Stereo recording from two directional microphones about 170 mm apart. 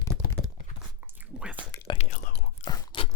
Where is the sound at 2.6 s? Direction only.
30° left (ahead or behind).